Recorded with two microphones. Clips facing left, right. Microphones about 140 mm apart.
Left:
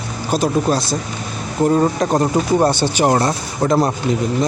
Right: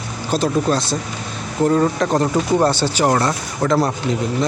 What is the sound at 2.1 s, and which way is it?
Speech, 15° left (ahead or behind).